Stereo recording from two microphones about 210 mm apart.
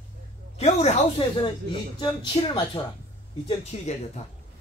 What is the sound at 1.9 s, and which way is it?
Speech, 20° left (ahead or behind).